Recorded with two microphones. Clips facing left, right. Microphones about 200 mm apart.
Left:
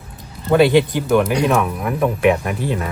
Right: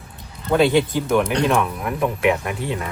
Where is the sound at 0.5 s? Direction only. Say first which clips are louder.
Left 3 dB; 15° left (ahead or behind).